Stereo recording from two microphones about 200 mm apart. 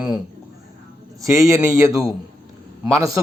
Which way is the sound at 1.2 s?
15° right (ahead or behind).